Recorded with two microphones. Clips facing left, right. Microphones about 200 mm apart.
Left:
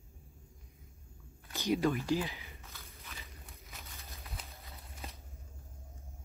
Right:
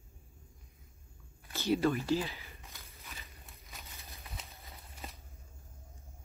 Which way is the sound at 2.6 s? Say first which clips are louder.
Left 1 dB; 15° right (ahead or behind).